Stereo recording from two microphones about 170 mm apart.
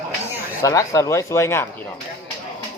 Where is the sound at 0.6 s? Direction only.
20° left (ahead or behind).